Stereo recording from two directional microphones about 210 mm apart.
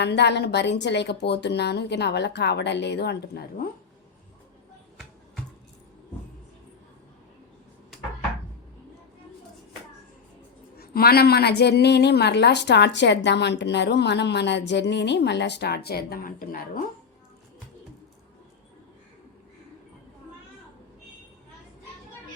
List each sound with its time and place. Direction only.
0.0 s a woman's voice: 55° left (ahead or behind)
10.8 s a woman's voice: 45° left (ahead or behind)